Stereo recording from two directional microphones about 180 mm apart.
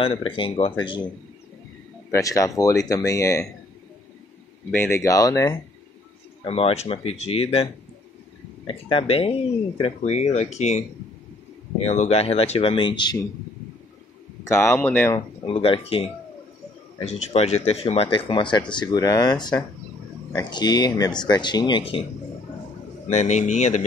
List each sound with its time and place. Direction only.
0.0 s speech: 30° left (ahead or behind)
4.6 s speech: 10° left (ahead or behind)
6.4 s speech: 35° left (ahead or behind)
11.8 s speech: 35° left (ahead or behind)
14.5 s speech: 15° left (ahead or behind)
15.1 s speech: 30° left (ahead or behind)
23.0 s speech: 40° left (ahead or behind)